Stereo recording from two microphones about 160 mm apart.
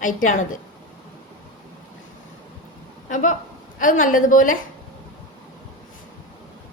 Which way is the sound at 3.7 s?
55° left (ahead or behind).